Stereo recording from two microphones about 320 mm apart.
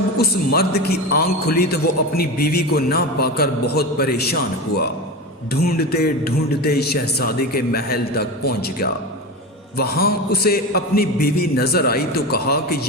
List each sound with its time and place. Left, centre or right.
0.2 s a man's voice: left